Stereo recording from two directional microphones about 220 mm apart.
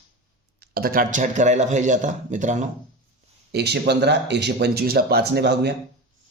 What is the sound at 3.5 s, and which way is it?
Speech, 50° right (ahead or behind).